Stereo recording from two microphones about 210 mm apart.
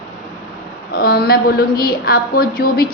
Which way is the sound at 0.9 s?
45° left (ahead or behind).